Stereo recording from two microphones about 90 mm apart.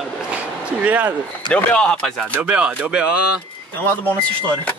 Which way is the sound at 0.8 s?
20° right (ahead or behind).